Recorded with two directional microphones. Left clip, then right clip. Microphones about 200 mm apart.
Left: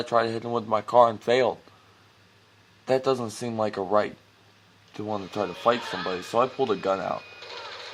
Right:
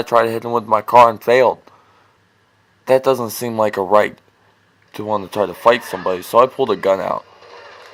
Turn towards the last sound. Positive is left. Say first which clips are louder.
# right 10 dB
turn(degrees=-30)  # may be behind; listen again after turning